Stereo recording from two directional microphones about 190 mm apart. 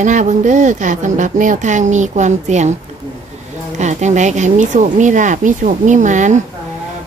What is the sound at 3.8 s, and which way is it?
Speech, 40° right (ahead or behind).